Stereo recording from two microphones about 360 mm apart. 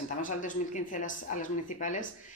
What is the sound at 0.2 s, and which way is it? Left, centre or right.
Speech, left.